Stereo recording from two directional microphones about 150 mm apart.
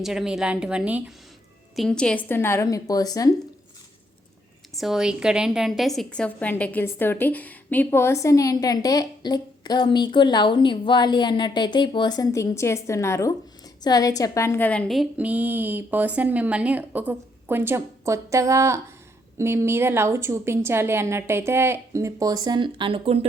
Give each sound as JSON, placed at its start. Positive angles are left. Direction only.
{"t": 0.0, "sound": "a woman's voice", "side_deg": -5}
{"t": 1.7, "sound": "a woman's voice", "side_deg": 5}
{"t": 4.7, "sound": "a woman's voice", "side_deg": 0}
{"t": 15.2, "sound": "a woman's voice", "side_deg": -10}